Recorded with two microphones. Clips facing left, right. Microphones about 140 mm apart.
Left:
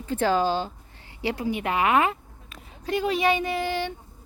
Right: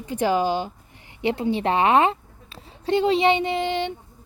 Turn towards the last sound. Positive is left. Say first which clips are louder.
# right 3 dB
turn(degrees=-20)  # may be behind; listen again after turning